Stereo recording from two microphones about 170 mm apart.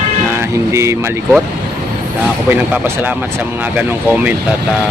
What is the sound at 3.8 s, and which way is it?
Speech, 10° right (ahead or behind).